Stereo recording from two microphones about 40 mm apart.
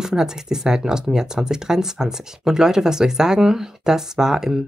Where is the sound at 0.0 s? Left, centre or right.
Centre.